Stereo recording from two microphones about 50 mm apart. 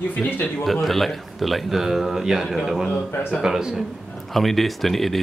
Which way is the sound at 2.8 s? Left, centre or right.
Left.